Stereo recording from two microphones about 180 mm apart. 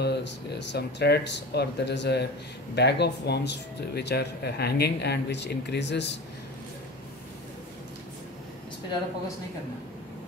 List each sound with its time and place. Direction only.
0.0 s speech: 70° left (ahead or behind)